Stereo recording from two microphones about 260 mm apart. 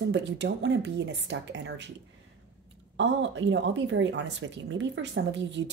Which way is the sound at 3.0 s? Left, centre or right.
Right.